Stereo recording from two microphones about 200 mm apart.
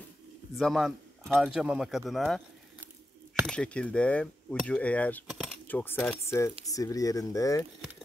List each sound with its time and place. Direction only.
0.6 s cutlery: centre (ahead or behind)
3.4 s cutlery: 5° left (ahead or behind)
5.2 s keys jangling: 5° right (ahead or behind)
5.7 s speech: 10° left (ahead or behind)